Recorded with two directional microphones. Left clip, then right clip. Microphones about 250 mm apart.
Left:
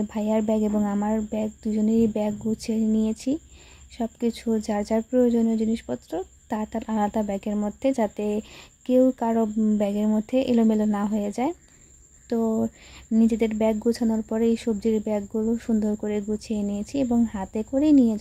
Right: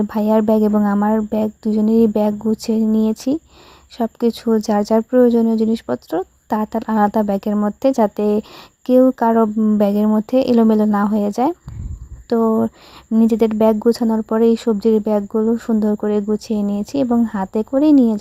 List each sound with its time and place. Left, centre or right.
0.0 s speech: right